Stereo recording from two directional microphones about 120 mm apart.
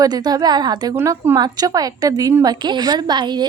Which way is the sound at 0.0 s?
30° right (ahead or behind).